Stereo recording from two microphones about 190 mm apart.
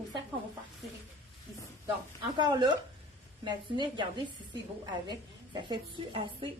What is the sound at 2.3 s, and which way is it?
A woman's voice, 25° right (ahead or behind).